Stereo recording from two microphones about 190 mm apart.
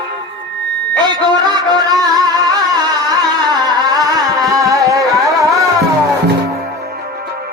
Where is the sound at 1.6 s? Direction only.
20° right (ahead or behind).